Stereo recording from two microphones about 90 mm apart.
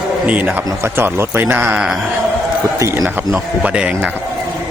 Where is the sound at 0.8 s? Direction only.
25° right (ahead or behind).